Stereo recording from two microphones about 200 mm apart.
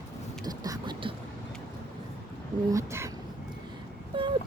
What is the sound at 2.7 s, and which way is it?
Speech, 15° right (ahead or behind).